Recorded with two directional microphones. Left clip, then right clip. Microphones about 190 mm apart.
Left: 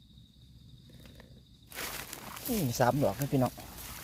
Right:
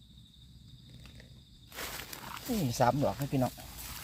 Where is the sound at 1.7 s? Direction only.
30° left (ahead or behind).